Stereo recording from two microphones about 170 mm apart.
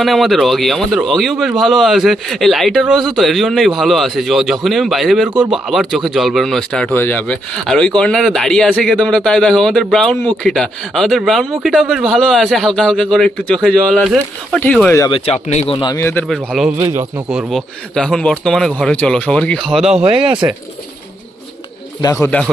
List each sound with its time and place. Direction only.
0.0 s speech: centre (ahead or behind)
15.1 s speech: 40° left (ahead or behind)
16.0 s speech: 10° left (ahead or behind)
16.7 s speech: 15° right (ahead or behind)
20.4 s speech: 20° right (ahead or behind)
22.0 s speech: 20° left (ahead or behind)